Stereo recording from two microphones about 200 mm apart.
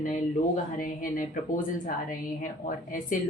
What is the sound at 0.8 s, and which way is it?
Speech, 40° left (ahead or behind).